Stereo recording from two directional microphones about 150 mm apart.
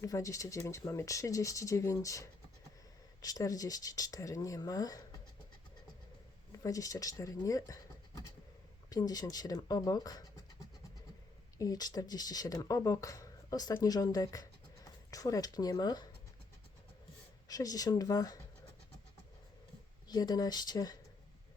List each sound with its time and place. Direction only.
0.0 s speech: 20° left (ahead or behind)
6.5 s speech: 20° left (ahead or behind)
11.5 s speech: 25° left (ahead or behind)
17.5 s speech: 25° left (ahead or behind)
20.1 s speech: 25° left (ahead or behind)